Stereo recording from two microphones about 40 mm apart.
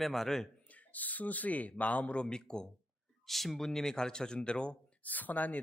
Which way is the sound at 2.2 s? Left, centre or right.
Left.